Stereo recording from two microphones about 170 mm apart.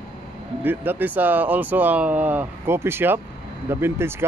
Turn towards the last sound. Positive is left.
turn(degrees=-15)  # may be behind; listen again after turning